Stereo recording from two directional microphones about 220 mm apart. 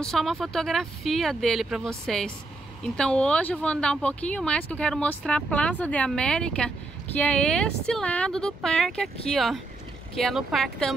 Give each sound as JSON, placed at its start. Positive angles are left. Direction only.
{"t": 0.0, "sound": "speech", "side_deg": 0}